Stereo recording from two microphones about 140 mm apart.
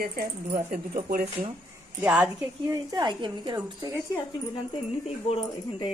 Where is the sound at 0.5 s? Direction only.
80° right.